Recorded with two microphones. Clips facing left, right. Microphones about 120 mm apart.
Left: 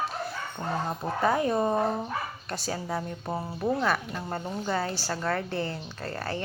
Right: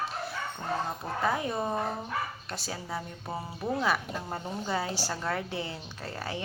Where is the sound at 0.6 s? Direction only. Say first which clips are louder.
Left 2 dB; 40° left (ahead or behind).